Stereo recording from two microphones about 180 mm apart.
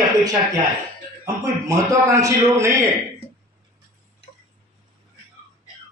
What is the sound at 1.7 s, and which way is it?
A man's voice, 15° right (ahead or behind).